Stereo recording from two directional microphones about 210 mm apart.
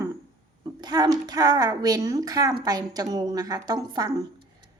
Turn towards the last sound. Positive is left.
turn(degrees=-20)  # may be behind; listen again after turning